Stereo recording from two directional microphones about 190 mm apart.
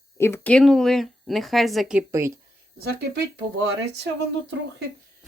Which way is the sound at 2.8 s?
60° right (ahead or behind).